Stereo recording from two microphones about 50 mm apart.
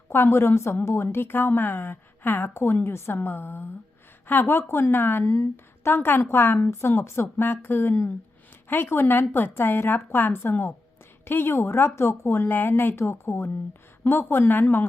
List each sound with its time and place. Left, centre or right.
0.1 s a woman's voice: left
2.5 s a woman's voice: left
6.7 s speech: left
7.4 s a woman's voice: left